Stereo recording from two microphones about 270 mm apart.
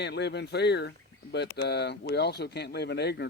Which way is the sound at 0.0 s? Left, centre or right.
Left.